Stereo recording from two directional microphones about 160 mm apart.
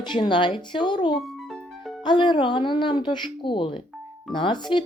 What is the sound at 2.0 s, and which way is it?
Speech, 30° left (ahead or behind).